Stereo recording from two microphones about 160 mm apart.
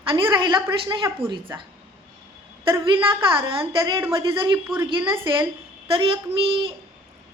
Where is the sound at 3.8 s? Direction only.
20° right (ahead or behind).